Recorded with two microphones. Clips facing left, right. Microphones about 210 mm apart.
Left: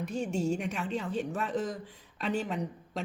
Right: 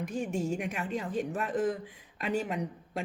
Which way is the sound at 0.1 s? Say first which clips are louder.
Left 2 dB; 50° right (ahead or behind).